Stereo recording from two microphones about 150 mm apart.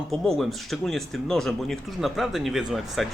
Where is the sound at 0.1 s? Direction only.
Centre (ahead or behind).